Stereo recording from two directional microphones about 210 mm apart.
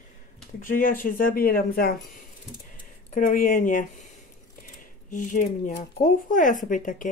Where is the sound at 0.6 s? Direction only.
40° left (ahead or behind).